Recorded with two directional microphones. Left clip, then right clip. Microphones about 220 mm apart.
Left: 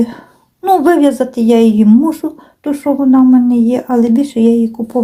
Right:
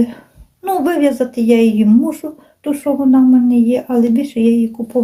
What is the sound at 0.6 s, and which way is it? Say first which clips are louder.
Speech: left 5 dB; 20° left (ahead or behind).